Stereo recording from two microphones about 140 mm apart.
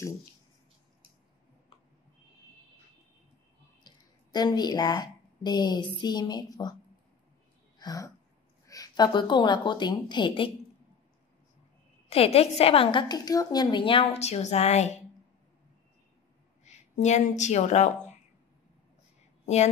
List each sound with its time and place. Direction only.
3.8 s a woman's voice: 30° left (ahead or behind)
7.8 s speech: 25° left (ahead or behind)
12.1 s a woman's voice: 45° left (ahead or behind)
16.6 s speech: 55° left (ahead or behind)
19.4 s a woman's voice: 55° left (ahead or behind)